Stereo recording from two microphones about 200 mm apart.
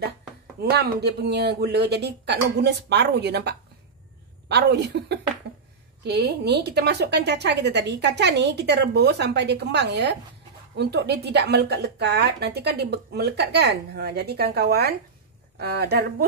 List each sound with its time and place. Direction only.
0.6 s speech: 55° right (ahead or behind)